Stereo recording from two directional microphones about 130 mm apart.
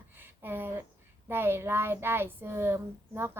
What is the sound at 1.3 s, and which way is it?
A woman's voice, 15° right (ahead or behind).